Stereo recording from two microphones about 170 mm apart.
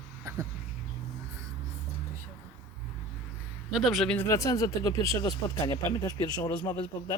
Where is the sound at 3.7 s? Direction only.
Centre (ahead or behind).